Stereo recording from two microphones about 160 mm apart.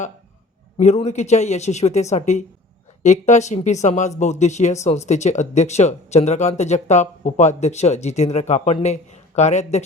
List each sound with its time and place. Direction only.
0.8 s speech: 45° left (ahead or behind)